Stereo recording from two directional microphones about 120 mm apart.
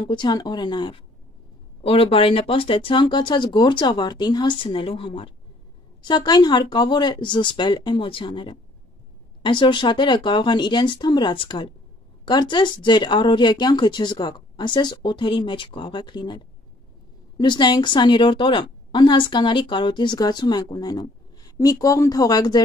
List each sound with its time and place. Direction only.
0.0 s a woman's voice: 40° left (ahead or behind)